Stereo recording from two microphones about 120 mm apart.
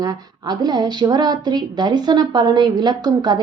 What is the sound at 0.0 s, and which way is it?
A woman's voice, 30° right (ahead or behind).